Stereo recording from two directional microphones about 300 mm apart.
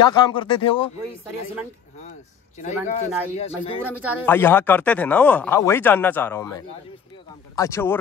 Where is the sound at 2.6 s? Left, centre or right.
Left.